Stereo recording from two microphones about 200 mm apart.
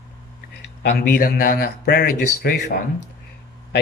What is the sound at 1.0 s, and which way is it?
Speech, 50° left (ahead or behind).